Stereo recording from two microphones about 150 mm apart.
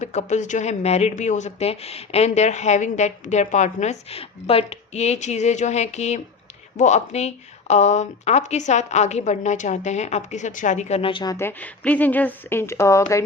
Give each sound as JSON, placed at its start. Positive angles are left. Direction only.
{"t": 0.0, "sound": "speech", "side_deg": 50}
{"t": 11.3, "sound": "speech", "side_deg": 15}